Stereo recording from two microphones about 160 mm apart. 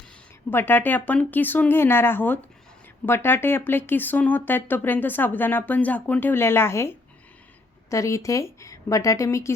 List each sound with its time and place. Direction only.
0.5 s speech: 15° left (ahead or behind)